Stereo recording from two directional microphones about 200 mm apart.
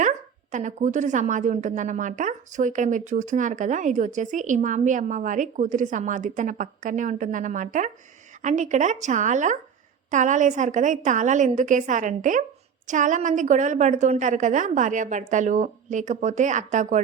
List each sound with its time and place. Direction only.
0.5 s a woman's voice: 35° right (ahead or behind)